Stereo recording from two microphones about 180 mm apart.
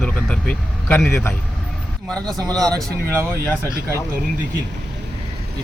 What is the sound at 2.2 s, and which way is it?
Speech, 20° right (ahead or behind).